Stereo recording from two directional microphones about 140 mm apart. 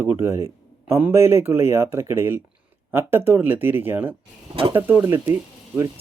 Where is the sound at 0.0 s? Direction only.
15° right (ahead or behind).